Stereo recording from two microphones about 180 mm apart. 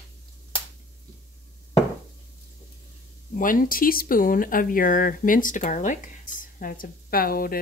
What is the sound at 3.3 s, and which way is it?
Speech, 50° left (ahead or behind).